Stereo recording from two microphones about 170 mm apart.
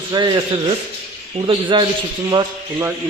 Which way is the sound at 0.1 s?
25° right (ahead or behind).